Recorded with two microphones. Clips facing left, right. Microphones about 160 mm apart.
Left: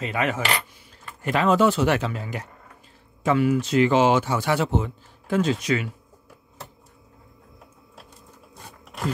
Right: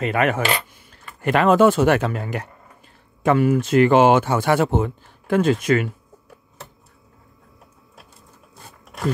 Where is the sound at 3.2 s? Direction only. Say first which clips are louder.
Right 3 dB; 50° right (ahead or behind).